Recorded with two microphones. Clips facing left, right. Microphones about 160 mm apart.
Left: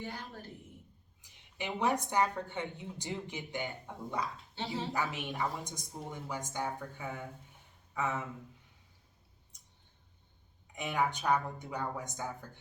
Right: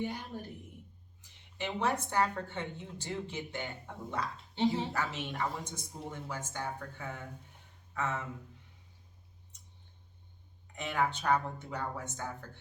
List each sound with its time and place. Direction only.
0.0 s a woman's voice: 15° right (ahead or behind)
1.2 s a woman's voice: 15° left (ahead or behind)
4.5 s speech: 20° right (ahead or behind)
4.9 s a woman's voice: 15° left (ahead or behind)
10.8 s a woman's voice: 15° left (ahead or behind)